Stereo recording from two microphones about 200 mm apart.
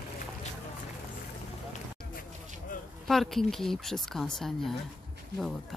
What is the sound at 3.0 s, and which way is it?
Speech, centre (ahead or behind).